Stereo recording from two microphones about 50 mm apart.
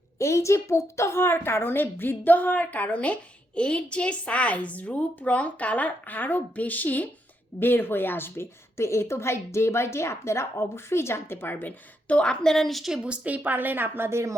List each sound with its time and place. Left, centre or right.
0.2 s a woman's voice: left
1.2 s a woman's voice: left
12.0 s a woman's voice: left
12.5 s a woman's voice: centre
12.9 s speech: centre
13.2 s a woman's voice: right
14.1 s speech: right